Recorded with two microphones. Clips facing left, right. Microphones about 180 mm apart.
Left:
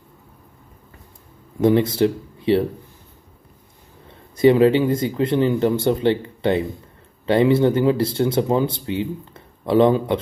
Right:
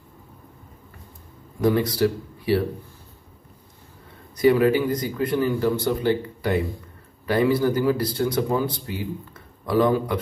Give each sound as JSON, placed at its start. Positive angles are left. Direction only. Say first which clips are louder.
{"t": 1.6, "sound": "speech", "louder": "left 4 dB", "side_deg": 25}
{"t": 4.4, "sound": "speech", "louder": "left 4 dB", "side_deg": 25}